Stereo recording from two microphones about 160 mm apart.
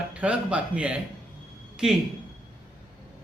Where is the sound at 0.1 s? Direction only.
10° right (ahead or behind).